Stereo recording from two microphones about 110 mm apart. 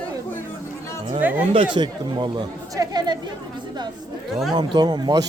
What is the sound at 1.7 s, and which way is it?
A man's voice, 45° right (ahead or behind).